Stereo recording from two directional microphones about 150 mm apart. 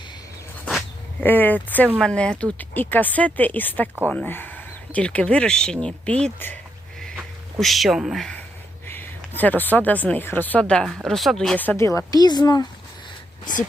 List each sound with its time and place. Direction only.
1.2 s speech: 15° left (ahead or behind)
7.6 s a woman's voice: centre (ahead or behind); by 12.6 s 25° left (ahead or behind)
13.5 s speech: 60° left (ahead or behind)